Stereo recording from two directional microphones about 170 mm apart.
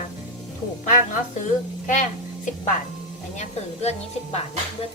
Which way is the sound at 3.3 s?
40° left (ahead or behind).